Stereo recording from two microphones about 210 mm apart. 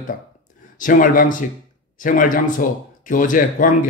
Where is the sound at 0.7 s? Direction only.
40° left (ahead or behind).